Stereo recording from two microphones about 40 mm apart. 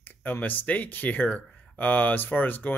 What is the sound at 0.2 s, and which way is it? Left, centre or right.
Speech, left.